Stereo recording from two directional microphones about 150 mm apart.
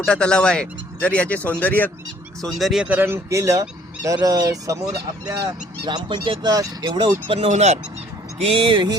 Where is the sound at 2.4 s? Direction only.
Centre (ahead or behind); by 5.0 s 20° right (ahead or behind).